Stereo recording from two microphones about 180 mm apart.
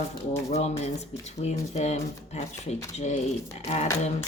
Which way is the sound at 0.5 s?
35° left (ahead or behind).